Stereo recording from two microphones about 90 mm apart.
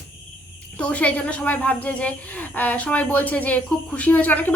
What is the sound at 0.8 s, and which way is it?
Speech, 15° left (ahead or behind).